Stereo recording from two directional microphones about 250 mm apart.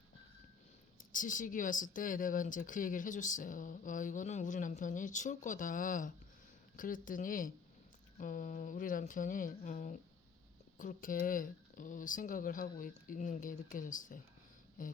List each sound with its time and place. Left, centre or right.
0.9 s speech: left